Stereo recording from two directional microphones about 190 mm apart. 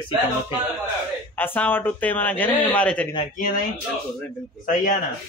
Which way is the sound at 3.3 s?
45° left (ahead or behind).